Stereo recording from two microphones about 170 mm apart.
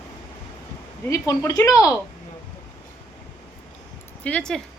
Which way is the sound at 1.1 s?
20° left (ahead or behind).